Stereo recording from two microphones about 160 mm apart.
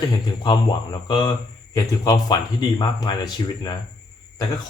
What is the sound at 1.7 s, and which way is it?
Speech, 20° left (ahead or behind).